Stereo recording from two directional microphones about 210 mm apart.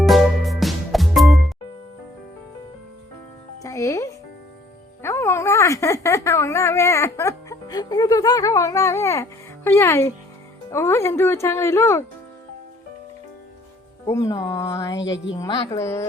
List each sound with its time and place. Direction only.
0.0 s music: centre (ahead or behind)
3.6 s music: 15° left (ahead or behind)
5.0 s a sound: 10° left (ahead or behind)
9.6 s speech: 10° left (ahead or behind)
14.1 s speech: 15° left (ahead or behind)
14.9 s a woman's voice: 60° left (ahead or behind)
15.3 s speech: 20° left (ahead or behind)